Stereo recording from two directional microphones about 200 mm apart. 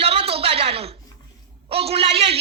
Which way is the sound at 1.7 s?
30° right (ahead or behind).